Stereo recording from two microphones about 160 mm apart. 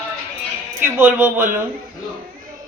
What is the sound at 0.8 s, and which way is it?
Speech, 15° right (ahead or behind).